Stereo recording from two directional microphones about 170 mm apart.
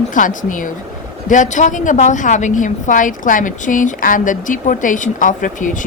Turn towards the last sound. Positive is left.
turn(degrees=50)  # may be behind; listen again after turning